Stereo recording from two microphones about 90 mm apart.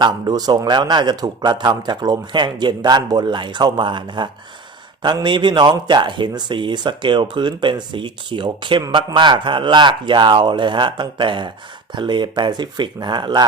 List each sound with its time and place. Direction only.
0.0 s a man's voice: 45° right (ahead or behind)